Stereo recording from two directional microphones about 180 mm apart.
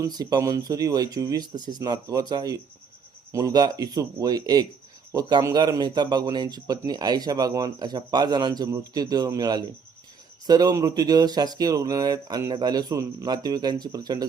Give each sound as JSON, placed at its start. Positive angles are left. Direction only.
{"t": 0.0, "sound": "speech", "side_deg": -20}